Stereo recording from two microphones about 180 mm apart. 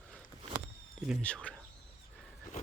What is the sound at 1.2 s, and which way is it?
Speech, 5° left (ahead or behind).